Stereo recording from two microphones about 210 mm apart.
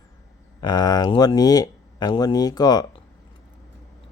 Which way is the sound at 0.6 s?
20° left (ahead or behind).